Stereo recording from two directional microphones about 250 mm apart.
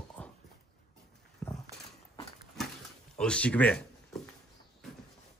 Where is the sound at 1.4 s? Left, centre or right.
Centre.